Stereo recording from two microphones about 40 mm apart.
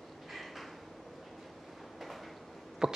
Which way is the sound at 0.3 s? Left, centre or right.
Centre.